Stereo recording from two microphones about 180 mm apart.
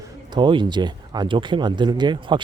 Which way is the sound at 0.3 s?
25° right (ahead or behind).